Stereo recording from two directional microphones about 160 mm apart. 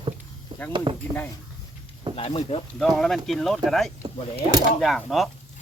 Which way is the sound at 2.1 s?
40° left (ahead or behind).